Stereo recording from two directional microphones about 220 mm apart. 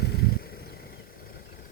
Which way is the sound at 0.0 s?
45° left (ahead or behind).